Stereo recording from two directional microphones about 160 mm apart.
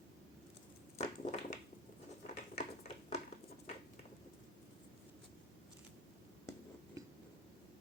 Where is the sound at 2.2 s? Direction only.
45° left (ahead or behind).